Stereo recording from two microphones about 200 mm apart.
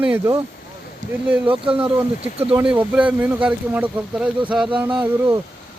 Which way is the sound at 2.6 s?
5° right (ahead or behind).